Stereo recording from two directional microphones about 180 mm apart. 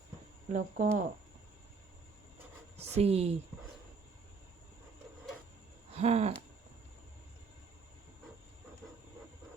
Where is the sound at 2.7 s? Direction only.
35° right (ahead or behind).